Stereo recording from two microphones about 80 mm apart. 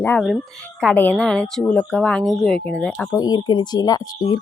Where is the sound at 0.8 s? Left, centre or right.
Left.